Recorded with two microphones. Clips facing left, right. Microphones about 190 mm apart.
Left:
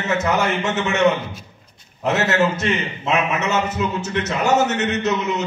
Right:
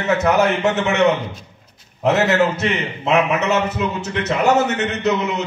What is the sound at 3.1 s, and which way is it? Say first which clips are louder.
A man's voice: right 4 dB; 60° right (ahead or behind).